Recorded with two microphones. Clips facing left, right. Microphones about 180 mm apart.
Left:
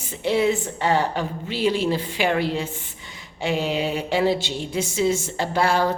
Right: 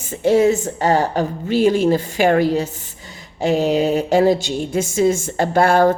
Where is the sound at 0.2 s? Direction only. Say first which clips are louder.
Right 6 dB; 45° right (ahead or behind).